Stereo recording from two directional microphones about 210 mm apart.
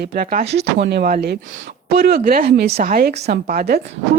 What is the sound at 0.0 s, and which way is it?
Speech, 45° right (ahead or behind).